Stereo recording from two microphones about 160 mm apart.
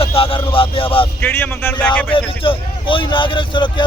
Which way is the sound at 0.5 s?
35° left (ahead or behind).